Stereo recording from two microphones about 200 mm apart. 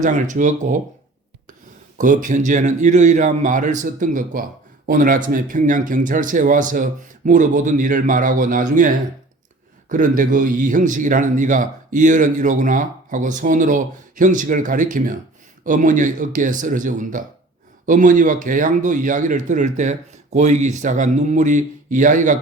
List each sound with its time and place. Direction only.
0.0 s a man's voice: 40° right (ahead or behind)
2.0 s a man's voice: 40° right (ahead or behind)